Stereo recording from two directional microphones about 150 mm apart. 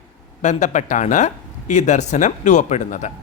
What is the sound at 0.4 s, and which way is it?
Speech, 50° left (ahead or behind).